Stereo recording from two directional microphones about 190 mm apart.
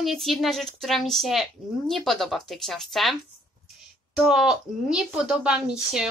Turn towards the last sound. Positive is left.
turn(degrees=-5)  # may be behind; listen again after turning